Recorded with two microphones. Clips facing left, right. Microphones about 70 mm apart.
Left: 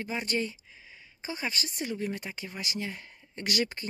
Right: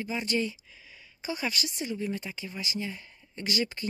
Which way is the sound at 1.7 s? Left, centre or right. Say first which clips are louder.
Right 1 dB; left.